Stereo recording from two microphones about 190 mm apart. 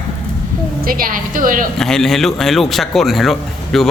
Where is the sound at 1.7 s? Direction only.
5° left (ahead or behind).